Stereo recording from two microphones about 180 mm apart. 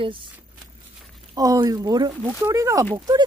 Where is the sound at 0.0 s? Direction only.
30° right (ahead or behind).